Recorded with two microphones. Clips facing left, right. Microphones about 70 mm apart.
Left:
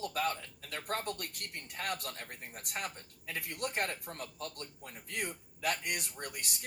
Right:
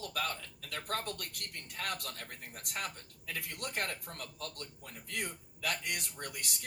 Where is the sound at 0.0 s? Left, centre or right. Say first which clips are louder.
Left 3 dB; left.